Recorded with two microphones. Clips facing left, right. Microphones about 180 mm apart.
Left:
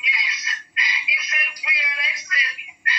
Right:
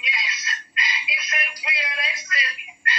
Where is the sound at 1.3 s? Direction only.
30° right (ahead or behind).